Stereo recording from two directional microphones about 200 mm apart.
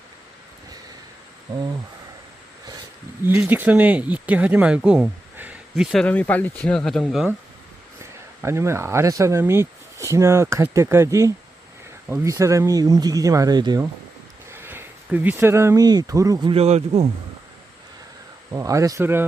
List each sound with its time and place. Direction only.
1.5 s speech: 20° right (ahead or behind)
3.2 s speech: 10° right (ahead or behind)
8.4 s speech: 15° right (ahead or behind); by 17.1 s 35° right (ahead or behind)
18.5 s speech: 15° right (ahead or behind)